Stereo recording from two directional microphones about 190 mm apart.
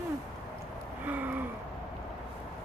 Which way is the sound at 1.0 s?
10° right (ahead or behind).